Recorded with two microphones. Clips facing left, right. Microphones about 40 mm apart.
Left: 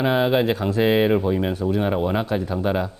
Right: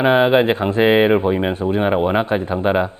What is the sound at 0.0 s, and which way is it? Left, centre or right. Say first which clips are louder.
Speech: right 6 dB; right.